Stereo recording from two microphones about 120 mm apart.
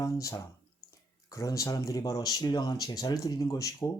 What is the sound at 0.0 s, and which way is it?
Speech, 25° left (ahead or behind).